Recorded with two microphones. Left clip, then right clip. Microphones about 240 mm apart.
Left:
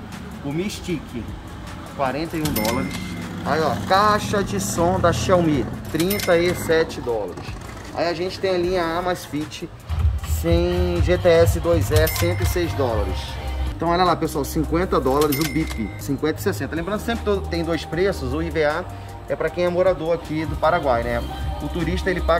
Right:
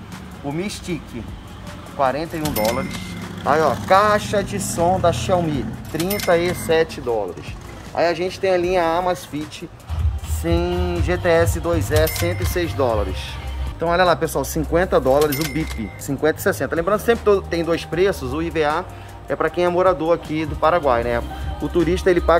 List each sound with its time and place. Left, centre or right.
0.6 s speech: centre
2.0 s speech: centre
3.4 s speech: centre
7.9 s speech: centre
16.2 s speech: centre